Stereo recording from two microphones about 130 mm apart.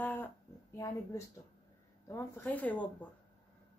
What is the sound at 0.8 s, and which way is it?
A child's voice, 25° left (ahead or behind).